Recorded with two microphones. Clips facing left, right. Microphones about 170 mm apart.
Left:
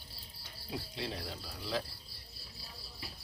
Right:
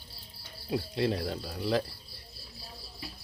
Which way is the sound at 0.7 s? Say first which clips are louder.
Right 11 dB; 55° right (ahead or behind).